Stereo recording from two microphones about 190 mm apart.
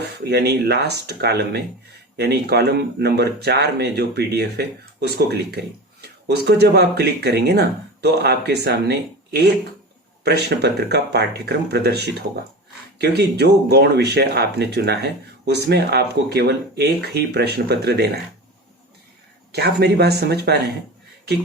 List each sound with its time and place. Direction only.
0.3 s speech: 60° right (ahead or behind)
19.5 s speech: 60° right (ahead or behind)